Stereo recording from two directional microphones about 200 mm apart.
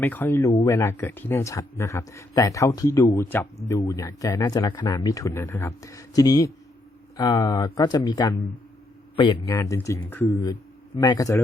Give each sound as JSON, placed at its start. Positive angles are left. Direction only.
{"t": 0.0, "sound": "speech", "side_deg": 10}
{"t": 9.6, "sound": "speech", "side_deg": 15}